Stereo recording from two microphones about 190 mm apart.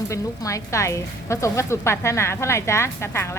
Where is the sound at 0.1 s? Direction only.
15° left (ahead or behind).